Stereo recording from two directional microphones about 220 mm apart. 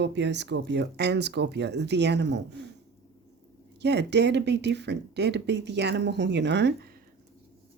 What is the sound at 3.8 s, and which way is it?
Speech, 50° right (ahead or behind).